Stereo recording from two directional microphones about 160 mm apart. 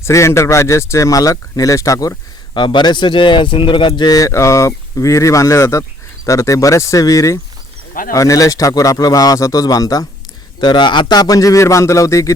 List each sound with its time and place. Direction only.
0.0 s speech: 20° left (ahead or behind)